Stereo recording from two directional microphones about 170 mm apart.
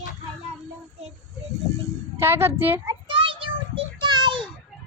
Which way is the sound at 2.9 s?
30° right (ahead or behind).